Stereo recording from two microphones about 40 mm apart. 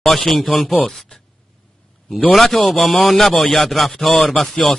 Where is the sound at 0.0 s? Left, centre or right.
Centre.